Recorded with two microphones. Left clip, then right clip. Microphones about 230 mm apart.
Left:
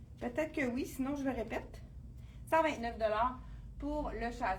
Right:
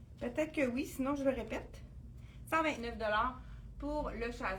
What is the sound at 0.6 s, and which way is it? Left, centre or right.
A woman's voice, centre.